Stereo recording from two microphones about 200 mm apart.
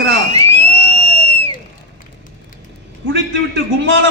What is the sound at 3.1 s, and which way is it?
A man's voice, 65° right (ahead or behind).